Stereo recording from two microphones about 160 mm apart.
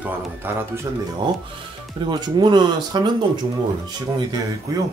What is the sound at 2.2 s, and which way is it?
Speech, 25° right (ahead or behind).